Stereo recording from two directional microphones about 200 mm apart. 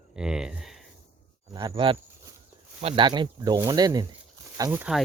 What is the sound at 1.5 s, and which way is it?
Speech, 20° right (ahead or behind).